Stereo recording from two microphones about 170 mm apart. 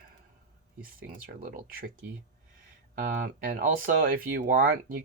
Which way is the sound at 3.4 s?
55° right (ahead or behind).